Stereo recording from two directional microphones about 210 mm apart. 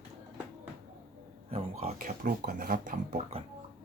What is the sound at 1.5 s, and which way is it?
Speech, 35° right (ahead or behind).